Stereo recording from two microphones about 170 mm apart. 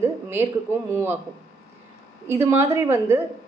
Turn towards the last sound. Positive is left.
turn(degrees=-15)  # may be behind; listen again after turning